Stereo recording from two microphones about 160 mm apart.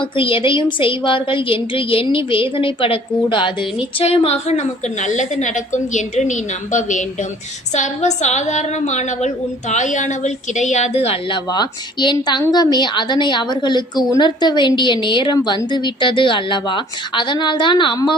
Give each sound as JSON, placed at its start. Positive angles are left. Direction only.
{"t": 0.2, "sound": "a woman's voice", "side_deg": 35}